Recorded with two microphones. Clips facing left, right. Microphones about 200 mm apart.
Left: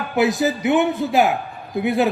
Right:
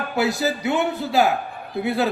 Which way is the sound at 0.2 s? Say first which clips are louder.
Left 4 dB; 20° left (ahead or behind).